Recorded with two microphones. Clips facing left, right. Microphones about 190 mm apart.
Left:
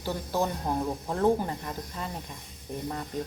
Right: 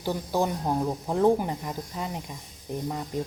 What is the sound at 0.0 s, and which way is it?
Speech, 15° right (ahead or behind).